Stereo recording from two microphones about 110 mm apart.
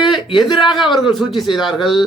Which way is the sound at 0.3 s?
Centre (ahead or behind).